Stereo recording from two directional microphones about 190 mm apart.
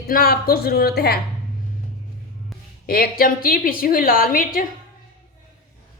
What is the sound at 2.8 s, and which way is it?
A woman's voice, 50° left (ahead or behind).